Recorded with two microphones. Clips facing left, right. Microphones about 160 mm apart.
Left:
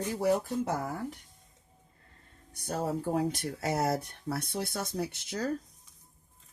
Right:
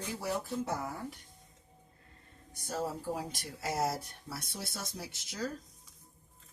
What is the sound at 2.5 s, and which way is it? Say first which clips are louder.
Speech: left 4 dB; 65° left (ahead or behind).